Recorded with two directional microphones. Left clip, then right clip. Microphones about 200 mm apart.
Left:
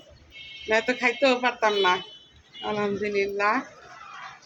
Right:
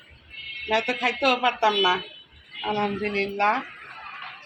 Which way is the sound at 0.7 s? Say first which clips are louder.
Left 1 dB; 30° left (ahead or behind).